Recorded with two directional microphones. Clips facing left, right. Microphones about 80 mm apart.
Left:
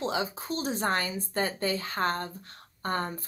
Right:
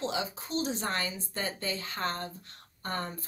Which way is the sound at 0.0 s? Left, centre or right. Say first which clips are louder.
Left 3 dB; left.